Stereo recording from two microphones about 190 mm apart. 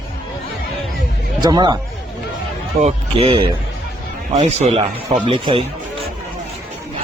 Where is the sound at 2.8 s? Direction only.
35° right (ahead or behind).